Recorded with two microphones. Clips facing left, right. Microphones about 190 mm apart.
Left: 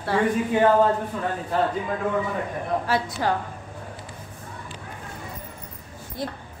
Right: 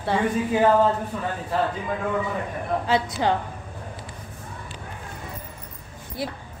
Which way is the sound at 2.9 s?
20° right (ahead or behind).